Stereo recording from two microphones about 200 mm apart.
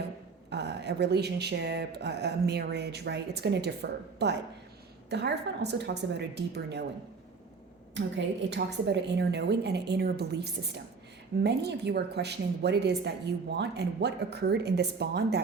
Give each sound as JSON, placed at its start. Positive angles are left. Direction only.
{"t": 0.5, "sound": "a woman's voice", "side_deg": -60}
{"t": 7.9, "sound": "a woman's voice", "side_deg": -60}